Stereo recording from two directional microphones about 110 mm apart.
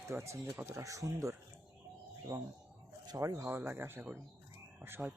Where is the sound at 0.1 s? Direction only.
25° right (ahead or behind).